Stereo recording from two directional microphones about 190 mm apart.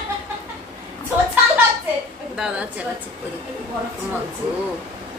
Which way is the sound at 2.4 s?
5° right (ahead or behind).